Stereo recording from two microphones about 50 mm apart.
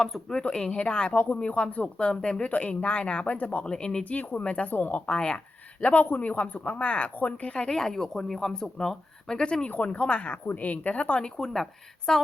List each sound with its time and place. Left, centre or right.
0.0 s speech: centre
1.1 s speech: left
1.4 s speech: left
3.7 s speech: centre
4.2 s speech: left
4.4 s speech: left
4.7 s speech: left
11.3 s speech: centre